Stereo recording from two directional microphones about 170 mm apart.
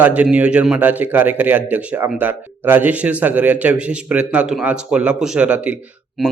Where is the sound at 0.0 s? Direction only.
10° right (ahead or behind).